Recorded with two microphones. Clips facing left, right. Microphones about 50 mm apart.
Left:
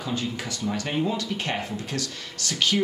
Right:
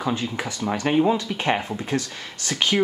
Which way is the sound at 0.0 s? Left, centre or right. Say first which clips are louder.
Right 4 dB; right.